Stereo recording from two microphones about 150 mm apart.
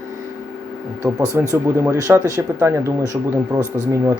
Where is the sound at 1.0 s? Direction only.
20° right (ahead or behind).